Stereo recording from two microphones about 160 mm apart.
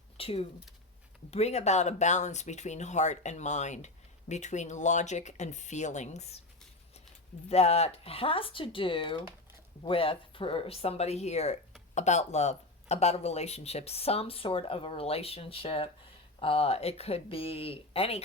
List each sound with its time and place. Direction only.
0.2 s speech: 35° left (ahead or behind)
7.4 s speech: 40° left (ahead or behind)